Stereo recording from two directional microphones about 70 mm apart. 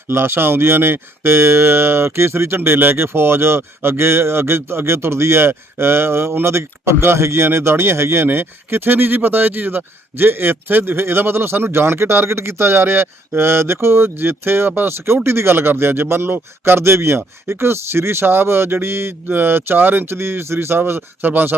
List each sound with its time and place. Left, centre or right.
0.1 s speech: right